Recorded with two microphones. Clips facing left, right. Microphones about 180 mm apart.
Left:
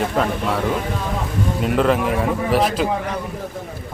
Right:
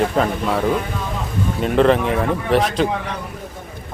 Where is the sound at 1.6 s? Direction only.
5° left (ahead or behind).